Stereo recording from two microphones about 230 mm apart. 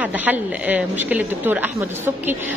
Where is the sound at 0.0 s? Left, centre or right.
Centre.